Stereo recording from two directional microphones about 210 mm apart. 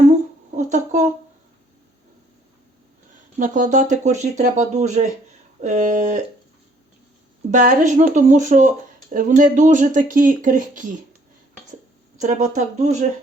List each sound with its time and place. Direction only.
0.5 s speech: 35° right (ahead or behind)
3.3 s speech: 40° right (ahead or behind)
7.5 s speech: 40° right (ahead or behind)
12.1 s speech: 35° right (ahead or behind)